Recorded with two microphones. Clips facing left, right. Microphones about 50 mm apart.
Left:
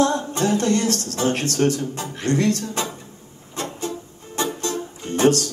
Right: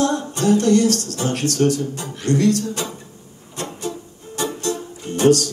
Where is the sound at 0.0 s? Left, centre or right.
Left.